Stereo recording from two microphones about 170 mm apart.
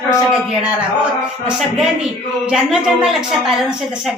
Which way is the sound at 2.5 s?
5° right (ahead or behind).